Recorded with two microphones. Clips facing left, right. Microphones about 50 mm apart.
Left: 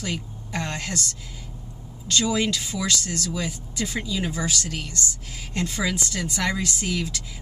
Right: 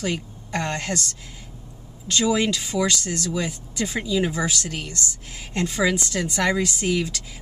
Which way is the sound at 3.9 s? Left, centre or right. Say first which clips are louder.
Right 6 dB; centre.